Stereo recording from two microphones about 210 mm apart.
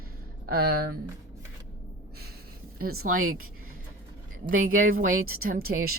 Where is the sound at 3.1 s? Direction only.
80° right.